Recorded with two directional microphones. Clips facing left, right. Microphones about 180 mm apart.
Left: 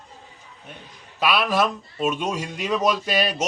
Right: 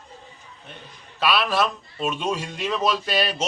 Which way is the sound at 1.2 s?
15° left (ahead or behind).